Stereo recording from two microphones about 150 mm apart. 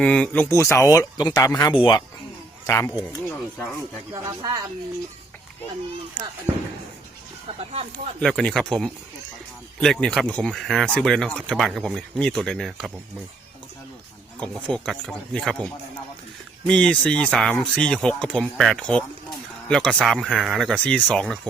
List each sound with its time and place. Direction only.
0.0 s speech: 5° left (ahead or behind)
0.4 s speech: 20° left (ahead or behind)
2.6 s speech: 15° left (ahead or behind)
4.1 s speech: 20° right (ahead or behind)
7.4 s speech: 40° right (ahead or behind)
8.2 s speech: 5° left (ahead or behind)
14.3 s speech: 5° left (ahead or behind)